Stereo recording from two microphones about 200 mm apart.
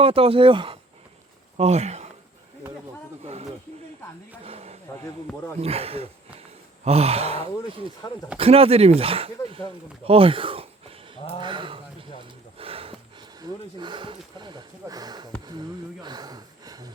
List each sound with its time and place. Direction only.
0.0 s speech: 30° right (ahead or behind)
4.4 s a sound: 30° right (ahead or behind)
5.5 s speech: 30° right (ahead or behind)
10.1 s a sound: 25° right (ahead or behind)
11.3 s speech: 25° right (ahead or behind)
12.5 s snort: 30° right (ahead or behind)
13.4 s speech: 25° right (ahead or behind)